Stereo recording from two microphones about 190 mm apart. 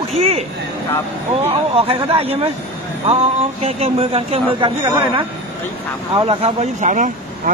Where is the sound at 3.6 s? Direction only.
30° right (ahead or behind).